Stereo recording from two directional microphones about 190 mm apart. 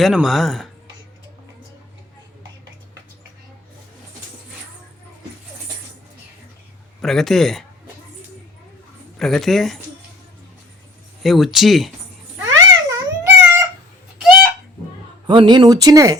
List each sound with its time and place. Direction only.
0.0 s speech: centre (ahead or behind)
7.0 s speech: centre (ahead or behind)
9.1 s speech: centre (ahead or behind)
11.2 s speech: centre (ahead or behind)
12.5 s a sound: 15° right (ahead or behind)
14.2 s a sound: centre (ahead or behind)
15.3 s speech: 25° right (ahead or behind)